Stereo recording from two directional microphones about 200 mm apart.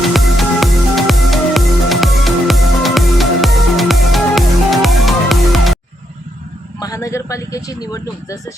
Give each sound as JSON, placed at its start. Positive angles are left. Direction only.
{"t": 0.1, "sound": "music", "side_deg": 0}
{"t": 6.7, "sound": "speech", "side_deg": 15}